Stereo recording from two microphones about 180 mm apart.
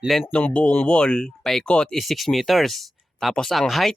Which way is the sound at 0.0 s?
Centre (ahead or behind).